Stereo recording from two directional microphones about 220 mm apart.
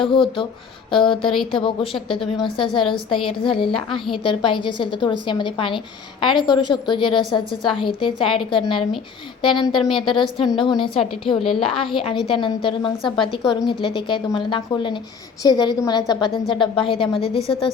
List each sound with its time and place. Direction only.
0.0 s a woman's voice: 25° left (ahead or behind)